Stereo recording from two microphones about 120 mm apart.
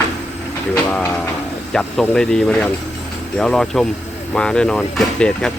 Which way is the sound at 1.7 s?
5° left (ahead or behind).